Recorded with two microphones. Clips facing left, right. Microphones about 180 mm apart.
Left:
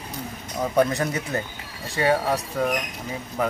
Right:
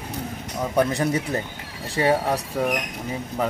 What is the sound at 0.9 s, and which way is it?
Speech, 30° right (ahead or behind).